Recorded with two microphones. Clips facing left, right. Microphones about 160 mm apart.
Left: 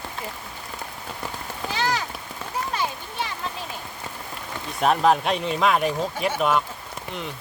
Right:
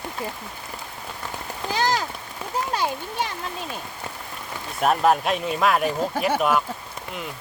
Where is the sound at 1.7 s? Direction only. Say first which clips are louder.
Right 3 dB; 40° right (ahead or behind).